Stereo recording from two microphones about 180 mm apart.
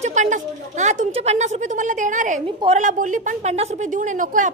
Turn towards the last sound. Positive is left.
turn(degrees=-45)  # may be behind; listen again after turning